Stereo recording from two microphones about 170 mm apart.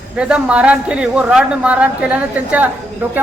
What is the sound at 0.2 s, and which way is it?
A man's voice, 5° right (ahead or behind).